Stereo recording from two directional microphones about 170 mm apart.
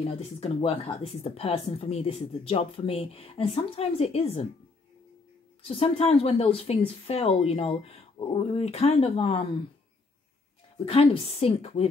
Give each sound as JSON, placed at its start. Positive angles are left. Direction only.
{"t": 0.0, "sound": "speech", "side_deg": 35}
{"t": 5.6, "sound": "speech", "side_deg": 35}
{"t": 10.9, "sound": "speech", "side_deg": 35}